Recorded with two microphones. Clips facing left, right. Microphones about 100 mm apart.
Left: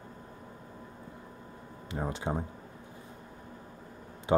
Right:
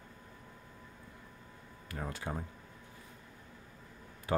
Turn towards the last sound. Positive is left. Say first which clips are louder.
# left 7 dB
turn(degrees=20)  # may be behind; listen again after turning